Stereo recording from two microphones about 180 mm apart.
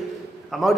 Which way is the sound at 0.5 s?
Centre (ahead or behind).